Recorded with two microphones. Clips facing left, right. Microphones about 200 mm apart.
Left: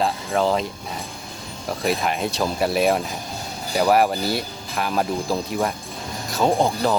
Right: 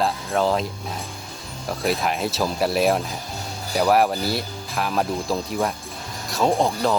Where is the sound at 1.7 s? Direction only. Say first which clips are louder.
Even; centre (ahead or behind).